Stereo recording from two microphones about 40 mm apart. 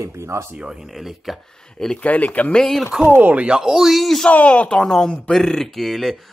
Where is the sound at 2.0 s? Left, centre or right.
Left.